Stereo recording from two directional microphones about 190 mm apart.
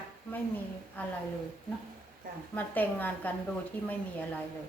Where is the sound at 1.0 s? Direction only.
10° left (ahead or behind).